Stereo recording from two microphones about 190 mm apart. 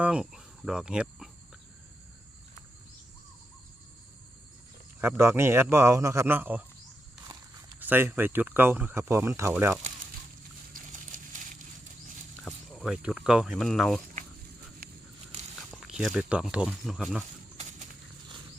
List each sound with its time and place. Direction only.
0.0 s cricket: 5° right (ahead or behind)
4.9 s speech: 10° right (ahead or behind)
7.8 s speech: 10° right (ahead or behind)
10.8 s horse: 45° right (ahead or behind)
12.5 s speech: centre (ahead or behind)
15.7 s speech: centre (ahead or behind)
17.6 s horse: 40° right (ahead or behind)